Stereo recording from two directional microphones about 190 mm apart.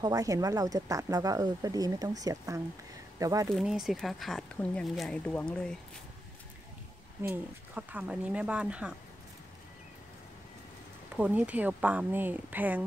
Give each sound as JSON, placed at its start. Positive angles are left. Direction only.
{"t": 0.0, "sound": "speech", "side_deg": -20}
{"t": 3.4, "sound": "speech", "side_deg": 0}
{"t": 7.2, "sound": "speech", "side_deg": -10}
{"t": 11.1, "sound": "speech", "side_deg": -5}